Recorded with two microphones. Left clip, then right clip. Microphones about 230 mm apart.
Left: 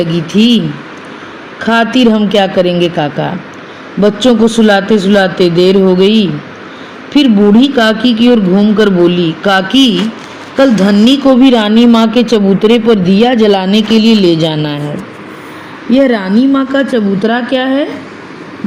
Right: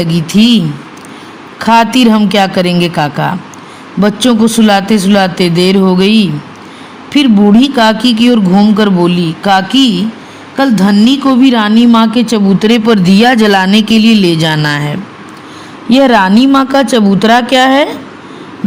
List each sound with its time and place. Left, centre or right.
0.0 s a woman's voice: right
15.9 s speech: right